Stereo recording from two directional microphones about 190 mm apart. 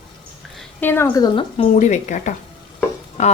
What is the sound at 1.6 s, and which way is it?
Speech, 40° left (ahead or behind).